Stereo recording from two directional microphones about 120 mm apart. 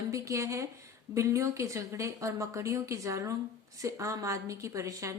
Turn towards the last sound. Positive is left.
turn(degrees=-25)  # may be behind; listen again after turning